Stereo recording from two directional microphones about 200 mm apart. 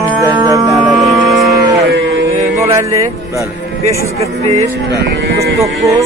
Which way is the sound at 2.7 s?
15° right (ahead or behind).